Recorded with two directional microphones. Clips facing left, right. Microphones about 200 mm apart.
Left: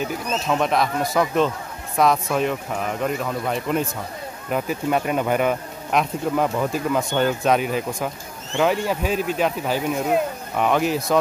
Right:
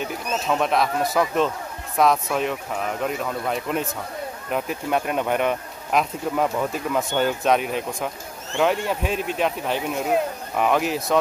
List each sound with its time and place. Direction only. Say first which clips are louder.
0.0 s speech: left 2 dB; centre (ahead or behind)